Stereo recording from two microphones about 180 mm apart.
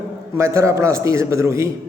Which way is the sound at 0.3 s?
15° right (ahead or behind).